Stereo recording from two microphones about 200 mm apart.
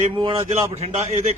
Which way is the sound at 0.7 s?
30° right (ahead or behind).